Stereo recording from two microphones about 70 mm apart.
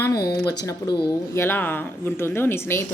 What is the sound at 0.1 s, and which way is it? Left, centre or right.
Speech, left.